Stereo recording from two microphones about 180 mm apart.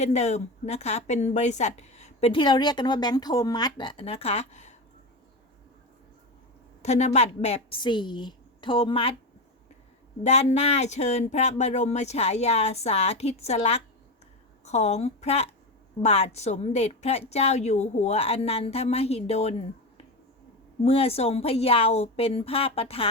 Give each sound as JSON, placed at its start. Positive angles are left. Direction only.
{"t": 0.0, "sound": "a woman's voice", "side_deg": 35}
{"t": 6.8, "sound": "a woman's voice", "side_deg": 40}
{"t": 10.2, "sound": "a woman's voice", "side_deg": 40}